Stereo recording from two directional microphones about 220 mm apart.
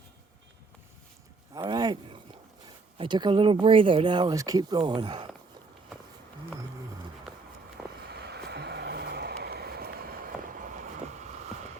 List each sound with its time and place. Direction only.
1.5 s speech: 20° right (ahead or behind)
7.9 s vehicle: 45° right (ahead or behind)